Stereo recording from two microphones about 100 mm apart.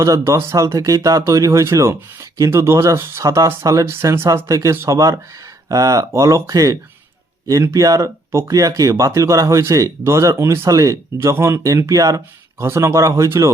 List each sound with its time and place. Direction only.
0.0 s speech: 30° right (ahead or behind)